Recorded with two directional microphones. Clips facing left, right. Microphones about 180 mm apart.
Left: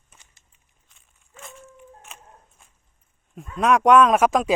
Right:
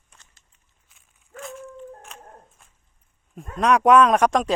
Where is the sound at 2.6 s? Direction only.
Centre (ahead or behind).